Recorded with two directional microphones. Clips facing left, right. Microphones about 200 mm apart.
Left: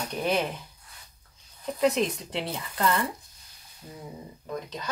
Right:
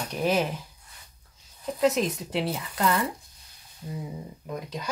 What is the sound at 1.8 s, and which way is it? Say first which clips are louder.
Speech: right 1 dB; centre (ahead or behind).